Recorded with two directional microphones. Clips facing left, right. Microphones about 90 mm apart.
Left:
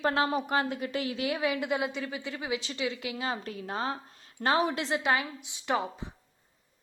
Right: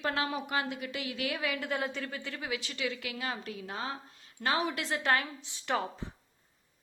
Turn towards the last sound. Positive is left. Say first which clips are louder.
# left 2 dB
turn(degrees=15)  # may be behind; listen again after turning